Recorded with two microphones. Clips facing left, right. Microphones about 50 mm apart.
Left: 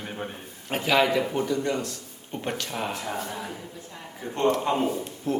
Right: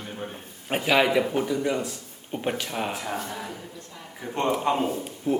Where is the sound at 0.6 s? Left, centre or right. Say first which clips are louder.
Right 1 dB; centre.